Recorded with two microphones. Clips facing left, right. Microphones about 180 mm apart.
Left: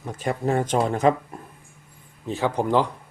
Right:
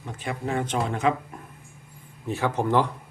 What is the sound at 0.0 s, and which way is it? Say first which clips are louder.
Speech: left 6 dB; 40° left (ahead or behind).